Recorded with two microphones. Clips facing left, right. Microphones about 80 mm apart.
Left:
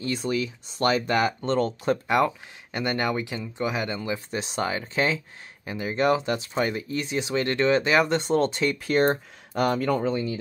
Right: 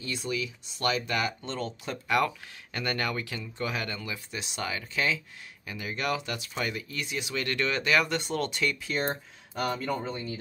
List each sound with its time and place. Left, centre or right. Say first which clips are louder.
0.0 s speech: left 6 dB; left
2.0 s speech: even; left
8.7 s speech: left 9 dB; left
9.6 s speech: left 7 dB; left